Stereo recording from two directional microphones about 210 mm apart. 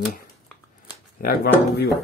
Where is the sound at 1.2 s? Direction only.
45° left (ahead or behind).